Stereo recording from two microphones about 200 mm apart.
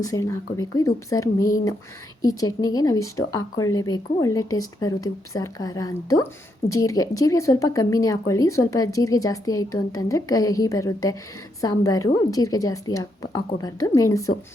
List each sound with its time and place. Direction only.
0.1 s speech: 15° left (ahead or behind)